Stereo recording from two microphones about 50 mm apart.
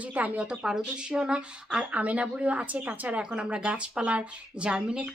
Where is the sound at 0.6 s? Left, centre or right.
Centre.